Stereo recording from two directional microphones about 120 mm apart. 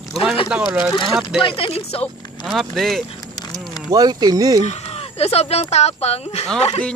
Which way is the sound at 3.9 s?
30° right (ahead or behind).